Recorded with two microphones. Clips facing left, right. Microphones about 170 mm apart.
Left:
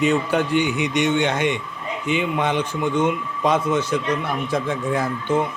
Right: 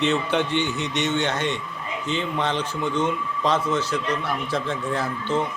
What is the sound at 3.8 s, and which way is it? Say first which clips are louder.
Speech: left 3 dB; 50° left (ahead or behind).